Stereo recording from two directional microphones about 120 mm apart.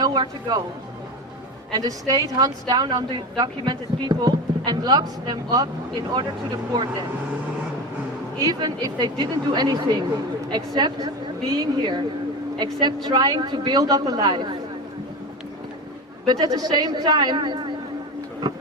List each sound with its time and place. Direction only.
0.0 s speech: 35° right (ahead or behind)
1.7 s a woman's voice: 30° right (ahead or behind)
8.4 s a woman's voice: 35° right (ahead or behind)
16.2 s a woman's voice: 35° right (ahead or behind)